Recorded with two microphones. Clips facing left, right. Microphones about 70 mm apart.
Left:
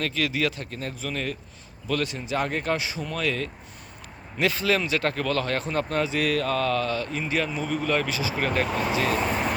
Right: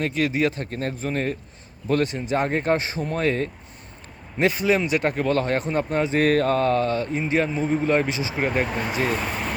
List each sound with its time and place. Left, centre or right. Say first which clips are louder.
0.0 s speech: right 4 dB; right
6.1 s speech: right 5 dB; right